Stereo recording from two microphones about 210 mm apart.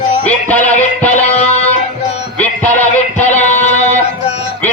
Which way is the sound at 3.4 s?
35° left (ahead or behind).